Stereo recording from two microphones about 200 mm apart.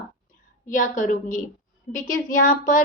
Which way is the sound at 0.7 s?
40° left (ahead or behind).